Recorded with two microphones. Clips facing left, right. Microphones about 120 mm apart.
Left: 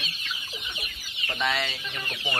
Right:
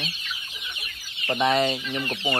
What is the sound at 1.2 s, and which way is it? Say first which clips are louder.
Chicken: right 7 dB; 35° right (ahead or behind).